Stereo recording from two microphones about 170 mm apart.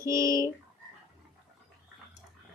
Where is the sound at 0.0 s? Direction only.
15° right (ahead or behind).